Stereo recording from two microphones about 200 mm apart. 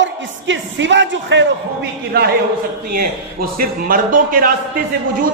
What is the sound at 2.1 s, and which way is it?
Speech, 55° right (ahead or behind).